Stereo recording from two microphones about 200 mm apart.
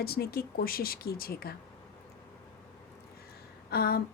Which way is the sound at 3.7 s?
50° left (ahead or behind).